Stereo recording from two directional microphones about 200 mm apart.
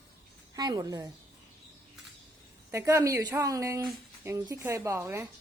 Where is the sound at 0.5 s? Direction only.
20° right (ahead or behind).